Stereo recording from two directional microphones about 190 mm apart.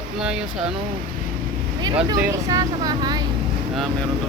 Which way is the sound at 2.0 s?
20° right (ahead or behind).